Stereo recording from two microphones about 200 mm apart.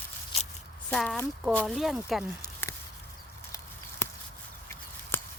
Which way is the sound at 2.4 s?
15° left (ahead or behind).